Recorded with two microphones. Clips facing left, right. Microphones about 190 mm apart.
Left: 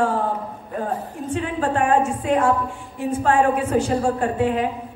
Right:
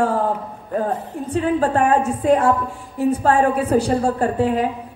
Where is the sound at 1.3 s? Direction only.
40° right (ahead or behind).